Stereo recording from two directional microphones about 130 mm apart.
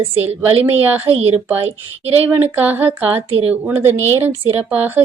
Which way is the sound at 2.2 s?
15° right (ahead or behind).